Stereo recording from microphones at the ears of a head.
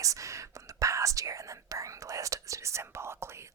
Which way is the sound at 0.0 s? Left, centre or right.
Right.